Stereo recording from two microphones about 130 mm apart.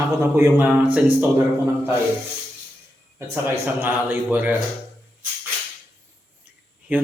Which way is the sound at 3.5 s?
15° right (ahead or behind).